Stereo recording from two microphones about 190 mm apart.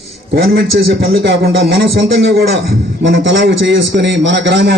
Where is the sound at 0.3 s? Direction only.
55° right (ahead or behind).